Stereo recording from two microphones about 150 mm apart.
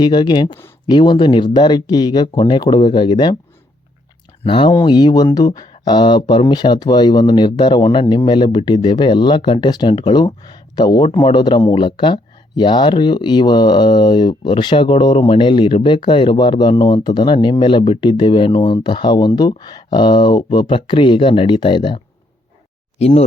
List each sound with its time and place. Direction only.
0.0 s speech: 30° left (ahead or behind)
4.4 s speech: 35° left (ahead or behind)
23.0 s speech: 45° left (ahead or behind)